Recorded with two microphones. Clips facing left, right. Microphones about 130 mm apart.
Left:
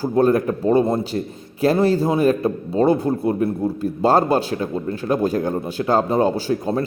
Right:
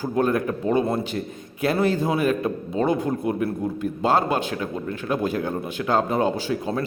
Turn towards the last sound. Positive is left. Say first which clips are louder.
# left 4 dB
turn(degrees=35)  # may be behind; listen again after turning